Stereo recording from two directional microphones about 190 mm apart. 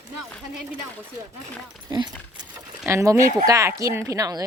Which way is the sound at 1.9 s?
25° right (ahead or behind).